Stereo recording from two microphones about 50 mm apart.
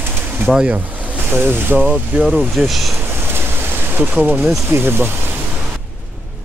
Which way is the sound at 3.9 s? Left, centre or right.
Right.